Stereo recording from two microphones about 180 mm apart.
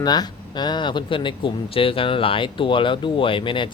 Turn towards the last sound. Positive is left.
turn(degrees=30)  # may be behind; listen again after turning